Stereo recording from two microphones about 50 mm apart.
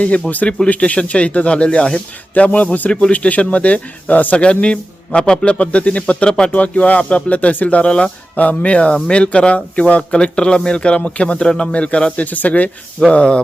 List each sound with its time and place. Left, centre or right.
0.0 s speech: left
4.4 s speech: left
6.5 s speech: left